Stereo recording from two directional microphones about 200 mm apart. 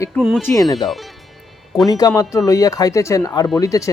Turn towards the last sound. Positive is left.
turn(degrees=15)  # may be behind; listen again after turning